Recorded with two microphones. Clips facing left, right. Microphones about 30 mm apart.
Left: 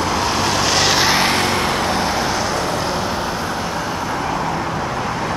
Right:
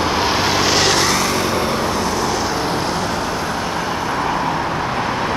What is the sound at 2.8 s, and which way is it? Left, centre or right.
Vehicle, centre.